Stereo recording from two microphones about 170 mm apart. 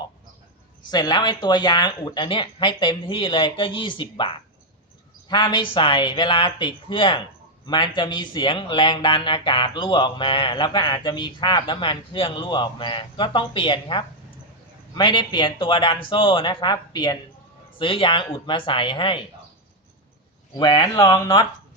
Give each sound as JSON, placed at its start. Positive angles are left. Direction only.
{"t": 0.9, "sound": "speech", "side_deg": 25}
{"t": 20.6, "sound": "speech", "side_deg": 25}